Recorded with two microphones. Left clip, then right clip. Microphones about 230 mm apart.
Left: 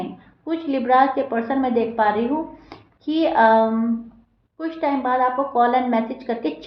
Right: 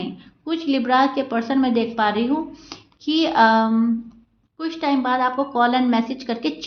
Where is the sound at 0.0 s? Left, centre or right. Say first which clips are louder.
Even; right.